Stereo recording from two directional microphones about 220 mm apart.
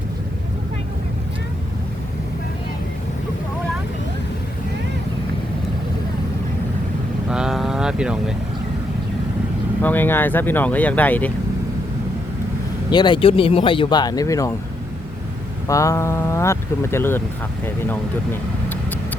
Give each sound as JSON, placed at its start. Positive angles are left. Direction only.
{"t": 7.3, "sound": "vehicle", "side_deg": -5}
{"t": 9.8, "sound": "speech", "side_deg": 10}
{"t": 12.9, "sound": "speech", "side_deg": 20}
{"t": 15.6, "sound": "speech", "side_deg": 15}